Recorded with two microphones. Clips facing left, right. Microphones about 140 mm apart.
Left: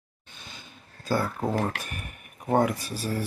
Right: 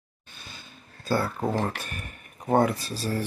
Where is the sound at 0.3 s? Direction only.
20° left (ahead or behind).